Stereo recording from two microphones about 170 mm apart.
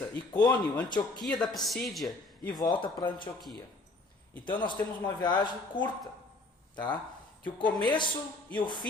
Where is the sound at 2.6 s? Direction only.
25° left (ahead or behind).